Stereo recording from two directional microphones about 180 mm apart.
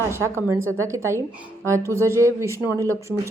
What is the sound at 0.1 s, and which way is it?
A woman's voice, 15° right (ahead or behind).